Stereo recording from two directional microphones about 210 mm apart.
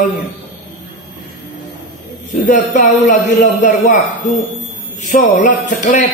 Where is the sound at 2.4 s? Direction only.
40° left (ahead or behind).